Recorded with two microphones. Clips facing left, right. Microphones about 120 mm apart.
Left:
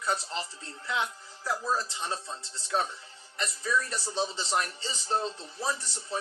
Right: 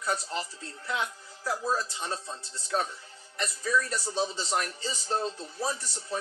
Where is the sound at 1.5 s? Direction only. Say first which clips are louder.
Right 1 dB; 45° right (ahead or behind).